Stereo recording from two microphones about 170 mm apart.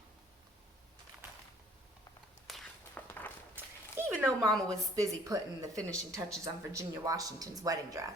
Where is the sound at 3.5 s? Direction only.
10° right (ahead or behind).